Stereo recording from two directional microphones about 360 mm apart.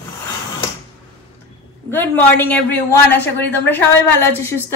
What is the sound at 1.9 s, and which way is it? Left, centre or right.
A woman's voice, centre.